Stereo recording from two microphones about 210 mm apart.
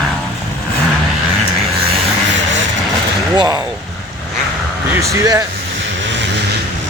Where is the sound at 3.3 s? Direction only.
15° right (ahead or behind).